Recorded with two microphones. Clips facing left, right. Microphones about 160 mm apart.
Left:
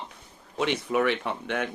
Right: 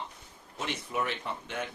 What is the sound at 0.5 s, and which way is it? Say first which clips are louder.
Speech: left 9 dB; 85° left.